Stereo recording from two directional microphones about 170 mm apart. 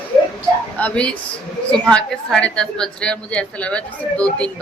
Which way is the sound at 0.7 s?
10° left (ahead or behind).